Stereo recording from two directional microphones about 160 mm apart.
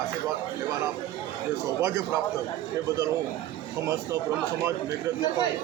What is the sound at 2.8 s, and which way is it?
Speech, 20° right (ahead or behind).